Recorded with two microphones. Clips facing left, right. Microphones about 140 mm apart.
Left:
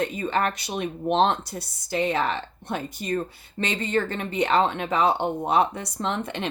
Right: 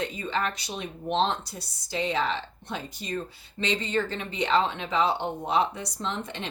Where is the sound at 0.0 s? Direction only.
55° left (ahead or behind).